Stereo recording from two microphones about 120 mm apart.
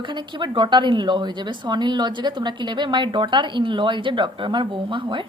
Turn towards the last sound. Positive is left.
turn(degrees=-45)  # may be behind; listen again after turning